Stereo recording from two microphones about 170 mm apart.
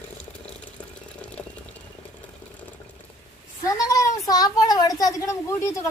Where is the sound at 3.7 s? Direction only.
20° left (ahead or behind).